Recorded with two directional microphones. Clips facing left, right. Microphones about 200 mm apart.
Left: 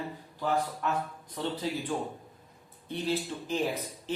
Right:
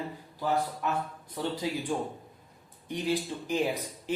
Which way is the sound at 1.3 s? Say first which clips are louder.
Right 2 dB; 10° right (ahead or behind).